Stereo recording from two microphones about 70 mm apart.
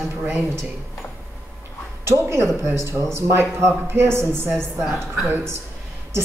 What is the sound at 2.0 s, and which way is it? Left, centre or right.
A woman's voice, right.